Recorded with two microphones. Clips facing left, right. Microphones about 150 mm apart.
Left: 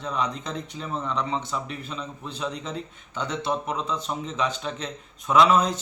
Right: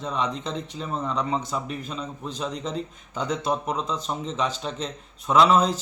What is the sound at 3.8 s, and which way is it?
Speech, 35° right (ahead or behind).